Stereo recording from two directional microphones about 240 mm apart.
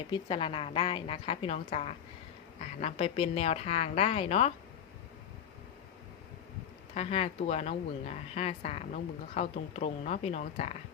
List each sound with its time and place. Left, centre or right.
0.1 s speech: left
6.9 s speech: left